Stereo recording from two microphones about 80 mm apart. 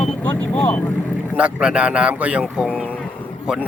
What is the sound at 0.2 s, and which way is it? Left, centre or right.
Vehicle, left.